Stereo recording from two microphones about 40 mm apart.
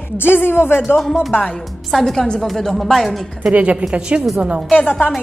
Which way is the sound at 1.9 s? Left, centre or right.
Centre.